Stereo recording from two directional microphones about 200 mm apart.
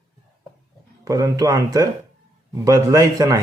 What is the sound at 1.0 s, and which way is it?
Speech, 20° right (ahead or behind).